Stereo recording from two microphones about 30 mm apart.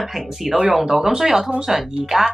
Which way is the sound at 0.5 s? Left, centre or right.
Centre.